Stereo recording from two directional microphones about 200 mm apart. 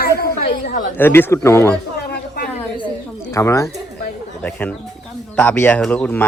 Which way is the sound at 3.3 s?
15° left (ahead or behind).